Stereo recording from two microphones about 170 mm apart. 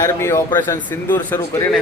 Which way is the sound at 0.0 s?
15° left (ahead or behind).